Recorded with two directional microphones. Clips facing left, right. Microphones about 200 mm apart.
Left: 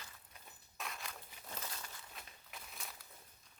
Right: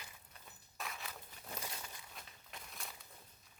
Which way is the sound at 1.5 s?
15° right (ahead or behind).